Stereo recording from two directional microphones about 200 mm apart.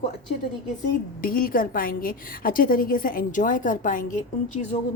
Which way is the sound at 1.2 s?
45° left (ahead or behind).